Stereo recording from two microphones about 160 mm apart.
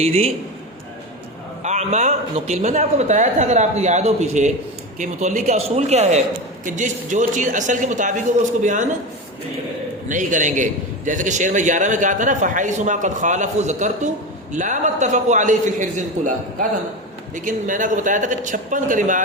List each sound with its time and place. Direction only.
0.0 s a man's voice: 40° right (ahead or behind)
1.6 s a man's voice: 45° right (ahead or behind)
10.1 s a man's voice: 50° right (ahead or behind)